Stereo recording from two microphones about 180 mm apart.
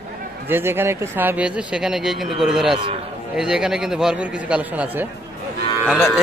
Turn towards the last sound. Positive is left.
turn(degrees=0)  # may be behind; listen again after turning